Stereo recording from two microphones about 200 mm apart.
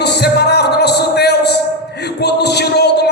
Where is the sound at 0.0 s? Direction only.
55° left (ahead or behind).